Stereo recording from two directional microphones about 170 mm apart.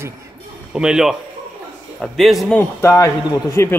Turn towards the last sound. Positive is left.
turn(degrees=15)  # may be behind; listen again after turning